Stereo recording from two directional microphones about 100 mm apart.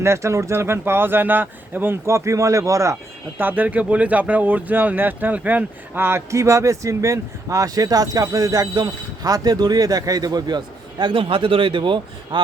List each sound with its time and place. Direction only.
0.0 s speech: 30° right (ahead or behind); by 12.4 s 55° right (ahead or behind)